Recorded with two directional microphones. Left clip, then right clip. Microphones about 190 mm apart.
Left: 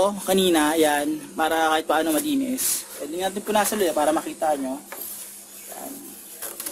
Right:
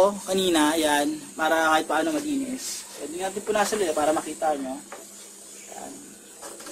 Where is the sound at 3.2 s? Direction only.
55° left (ahead or behind).